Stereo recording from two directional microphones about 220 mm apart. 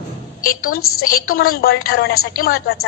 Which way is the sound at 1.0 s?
40° left (ahead or behind).